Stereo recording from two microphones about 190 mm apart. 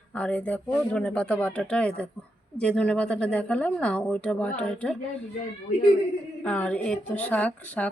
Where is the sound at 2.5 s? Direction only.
5° left (ahead or behind).